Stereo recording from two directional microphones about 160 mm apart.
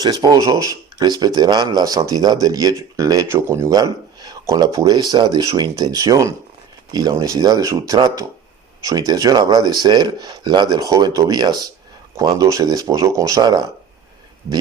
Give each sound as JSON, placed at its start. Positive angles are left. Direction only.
{"t": 0.0, "sound": "speech", "side_deg": -25}